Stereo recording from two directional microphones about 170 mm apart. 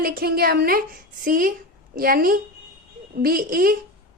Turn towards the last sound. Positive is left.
turn(degrees=-55)  # may be behind; listen again after turning